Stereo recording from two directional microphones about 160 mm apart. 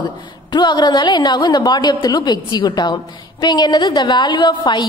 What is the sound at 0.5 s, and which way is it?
A woman's voice, 25° left (ahead or behind).